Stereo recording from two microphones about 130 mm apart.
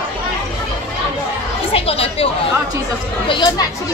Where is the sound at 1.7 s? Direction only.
50° left (ahead or behind).